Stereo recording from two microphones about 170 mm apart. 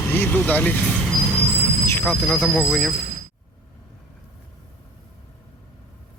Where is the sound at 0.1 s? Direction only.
10° left (ahead or behind).